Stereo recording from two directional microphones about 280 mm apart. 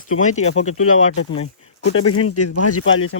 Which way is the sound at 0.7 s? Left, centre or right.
Left.